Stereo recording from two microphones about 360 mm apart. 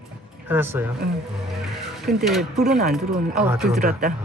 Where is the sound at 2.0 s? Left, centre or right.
Centre.